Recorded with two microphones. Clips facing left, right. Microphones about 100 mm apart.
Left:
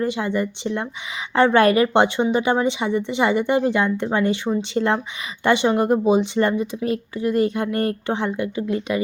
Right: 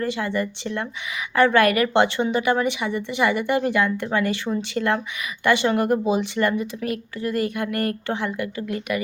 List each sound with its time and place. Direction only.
0.0 s a woman's voice: 20° left (ahead or behind)